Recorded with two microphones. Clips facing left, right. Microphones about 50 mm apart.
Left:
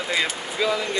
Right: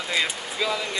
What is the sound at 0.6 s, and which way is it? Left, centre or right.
Speech, centre.